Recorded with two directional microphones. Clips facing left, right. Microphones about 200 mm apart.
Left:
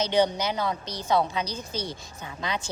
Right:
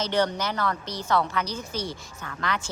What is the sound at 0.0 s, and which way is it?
A woman's voice, 15° left (ahead or behind).